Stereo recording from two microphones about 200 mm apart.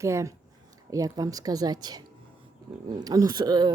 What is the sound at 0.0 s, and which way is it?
A woman's voice, 15° right (ahead or behind).